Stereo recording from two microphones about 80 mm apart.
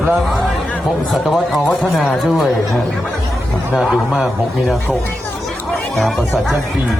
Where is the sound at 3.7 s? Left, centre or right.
Centre.